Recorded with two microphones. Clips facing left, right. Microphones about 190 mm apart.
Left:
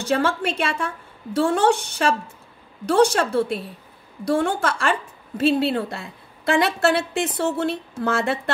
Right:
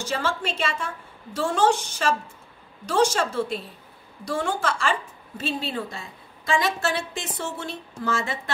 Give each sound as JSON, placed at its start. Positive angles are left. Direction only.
{"t": 0.0, "sound": "a woman's voice", "side_deg": 60}